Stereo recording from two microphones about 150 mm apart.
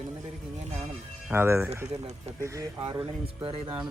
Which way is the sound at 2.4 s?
20° right (ahead or behind).